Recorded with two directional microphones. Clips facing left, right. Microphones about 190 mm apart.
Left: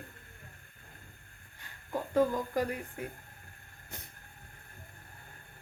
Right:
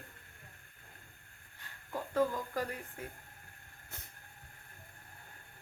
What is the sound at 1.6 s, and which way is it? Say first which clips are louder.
Speech: left 4 dB; 15° left (ahead or behind).